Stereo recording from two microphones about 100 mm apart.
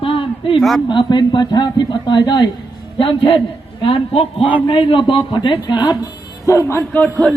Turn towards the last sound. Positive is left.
turn(degrees=20)  # may be behind; listen again after turning